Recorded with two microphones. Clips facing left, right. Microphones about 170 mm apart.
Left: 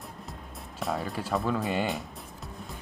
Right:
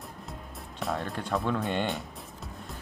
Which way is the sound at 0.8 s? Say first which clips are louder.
Left 1 dB; centre (ahead or behind).